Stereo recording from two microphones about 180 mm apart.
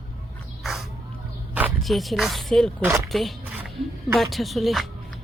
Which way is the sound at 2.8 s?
15° right (ahead or behind).